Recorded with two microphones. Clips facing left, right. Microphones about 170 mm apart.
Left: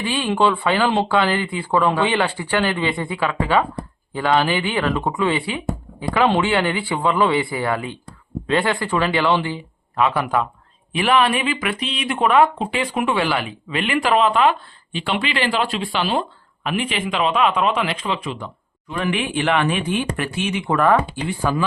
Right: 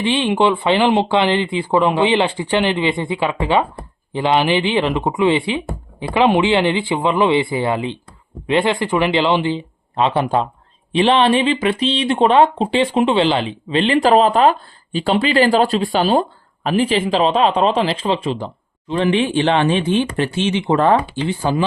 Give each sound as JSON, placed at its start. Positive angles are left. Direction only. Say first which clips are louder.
{"t": 0.0, "sound": "speech", "louder": "right 3 dB", "side_deg": -25}